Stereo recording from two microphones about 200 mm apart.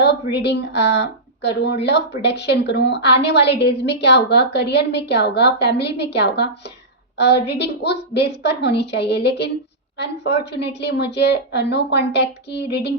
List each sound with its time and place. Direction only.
0.0 s a woman's voice: 60° left (ahead or behind)